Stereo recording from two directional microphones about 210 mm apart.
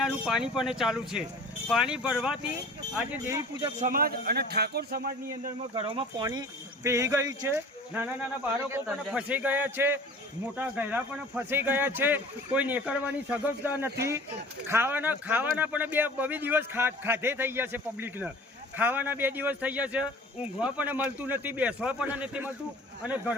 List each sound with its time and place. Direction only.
0.0 s speech: 5° right (ahead or behind)
3.8 s a man's voice: 40° right (ahead or behind)
5.7 s speech: 25° right (ahead or behind); by 23.3 s 10° right (ahead or behind)